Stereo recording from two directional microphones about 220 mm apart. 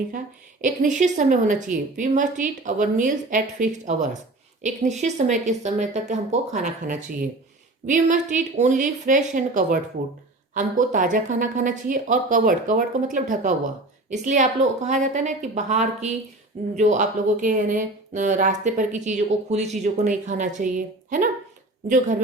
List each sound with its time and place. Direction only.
0.6 s speech: 35° right (ahead or behind)